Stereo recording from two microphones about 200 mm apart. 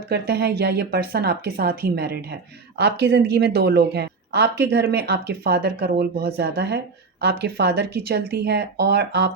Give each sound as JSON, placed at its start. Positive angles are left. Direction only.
{"t": 0.1, "sound": "speech", "side_deg": -55}